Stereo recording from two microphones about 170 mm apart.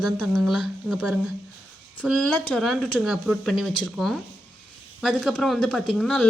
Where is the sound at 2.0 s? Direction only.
5° left (ahead or behind).